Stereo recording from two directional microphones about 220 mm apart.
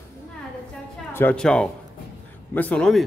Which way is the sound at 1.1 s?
5° left (ahead or behind).